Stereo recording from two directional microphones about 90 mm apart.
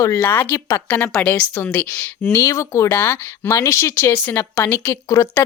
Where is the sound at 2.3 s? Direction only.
35° left (ahead or behind); by 3.5 s 20° left (ahead or behind).